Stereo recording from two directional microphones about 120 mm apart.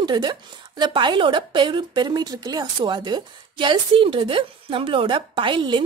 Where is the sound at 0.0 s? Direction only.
40° right (ahead or behind).